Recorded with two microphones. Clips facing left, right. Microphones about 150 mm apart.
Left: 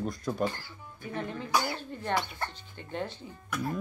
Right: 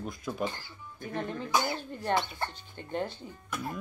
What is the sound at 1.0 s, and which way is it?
Speech, 35° right (ahead or behind).